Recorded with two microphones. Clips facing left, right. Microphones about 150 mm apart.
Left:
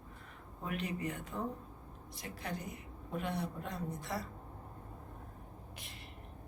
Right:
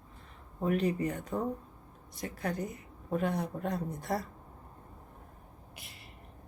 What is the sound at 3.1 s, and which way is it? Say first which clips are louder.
Speech: right 6 dB; 45° right (ahead or behind).